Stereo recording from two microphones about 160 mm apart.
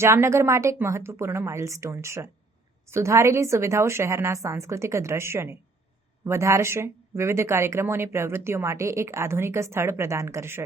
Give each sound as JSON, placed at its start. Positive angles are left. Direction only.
{"t": 0.0, "sound": "speech", "side_deg": -15}